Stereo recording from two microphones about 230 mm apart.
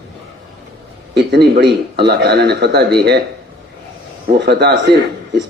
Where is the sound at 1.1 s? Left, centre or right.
Right.